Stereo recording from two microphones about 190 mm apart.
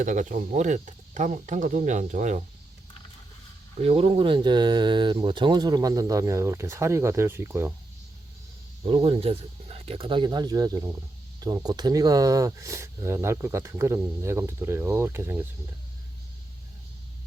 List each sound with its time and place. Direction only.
0.0 s speech: 40° right (ahead or behind)
3.8 s speech: 30° right (ahead or behind); by 7.7 s 10° right (ahead or behind)
8.8 s speech: 30° right (ahead or behind); by 15.4 s 10° right (ahead or behind)